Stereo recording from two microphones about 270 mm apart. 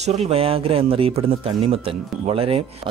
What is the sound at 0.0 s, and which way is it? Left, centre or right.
Speech, right.